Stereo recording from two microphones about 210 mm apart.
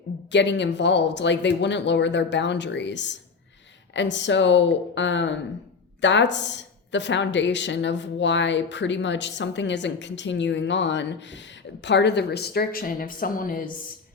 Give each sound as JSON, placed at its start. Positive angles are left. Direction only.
{"t": 0.3, "sound": "speech", "side_deg": 55}